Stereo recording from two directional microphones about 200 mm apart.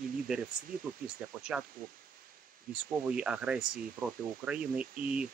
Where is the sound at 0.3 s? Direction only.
5° right (ahead or behind).